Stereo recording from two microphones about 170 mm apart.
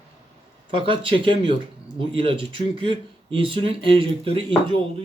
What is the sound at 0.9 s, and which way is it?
A man's voice, 30° right (ahead or behind).